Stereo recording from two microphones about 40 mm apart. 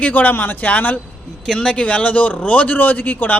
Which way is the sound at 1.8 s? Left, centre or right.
Left.